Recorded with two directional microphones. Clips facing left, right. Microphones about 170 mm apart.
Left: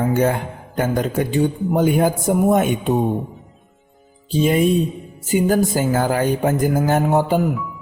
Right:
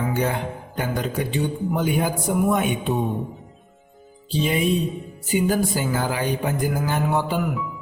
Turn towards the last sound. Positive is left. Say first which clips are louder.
# left 6 dB
turn(degrees=45)  # may be behind; listen again after turning